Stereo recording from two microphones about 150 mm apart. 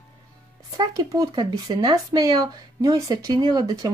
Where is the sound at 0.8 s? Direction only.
25° right (ahead or behind).